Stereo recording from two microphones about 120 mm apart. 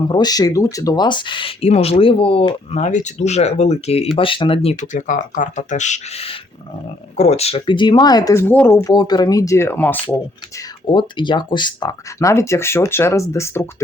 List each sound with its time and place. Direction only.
0.1 s speech: 35° left (ahead or behind)
2.7 s speech: 80° left; by 4.1 s 60° left (ahead or behind)
4.1 s speech: 45° left (ahead or behind)
4.8 s speech: 90° left
7.2 s speech: 65° left (ahead or behind)
7.7 s speech: 40° left (ahead or behind); by 10.2 s 15° left (ahead or behind)
10.8 s speech: 40° left (ahead or behind); by 13.8 s 20° left (ahead or behind)